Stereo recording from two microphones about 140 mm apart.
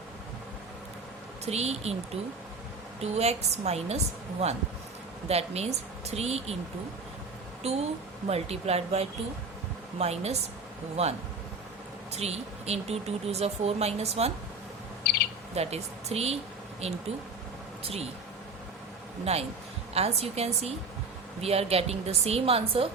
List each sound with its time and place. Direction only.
1.5 s speech: 50° right (ahead or behind)
3.0 s speech: 50° right (ahead or behind)
7.6 s a woman's voice: 50° right (ahead or behind)
12.1 s speech: 50° right (ahead or behind)
15.5 s speech: 50° right (ahead or behind)
19.2 s speech: 45° right (ahead or behind)